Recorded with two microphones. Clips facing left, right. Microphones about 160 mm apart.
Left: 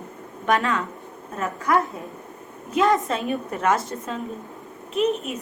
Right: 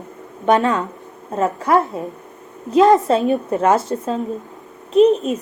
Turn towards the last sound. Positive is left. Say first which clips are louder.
# right 10 dB
turn(degrees=-35)  # may be behind; listen again after turning